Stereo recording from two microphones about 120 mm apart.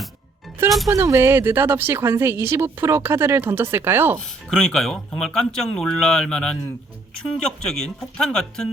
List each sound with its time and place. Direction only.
0.9 s speech: 25° right (ahead or behind)
4.4 s speech: 5° left (ahead or behind)